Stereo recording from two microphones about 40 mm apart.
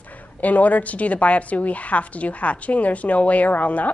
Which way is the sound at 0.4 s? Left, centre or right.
Left.